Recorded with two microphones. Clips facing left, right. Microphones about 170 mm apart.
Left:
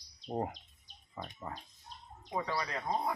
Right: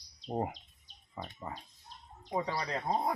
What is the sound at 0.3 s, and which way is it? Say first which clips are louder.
Speech: right 1 dB; 10° right (ahead or behind).